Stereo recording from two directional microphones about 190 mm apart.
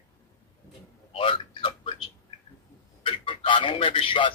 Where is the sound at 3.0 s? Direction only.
25° left (ahead or behind).